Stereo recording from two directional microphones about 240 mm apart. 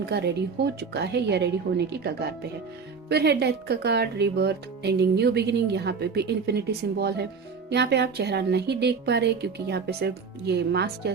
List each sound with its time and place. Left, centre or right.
0.0 s speech: right
3.1 s speech: right